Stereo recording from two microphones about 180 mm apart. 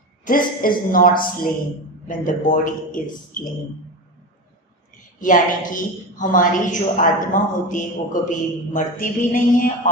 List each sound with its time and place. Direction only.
0.3 s speech: 50° left (ahead or behind)
5.2 s speech: 45° left (ahead or behind)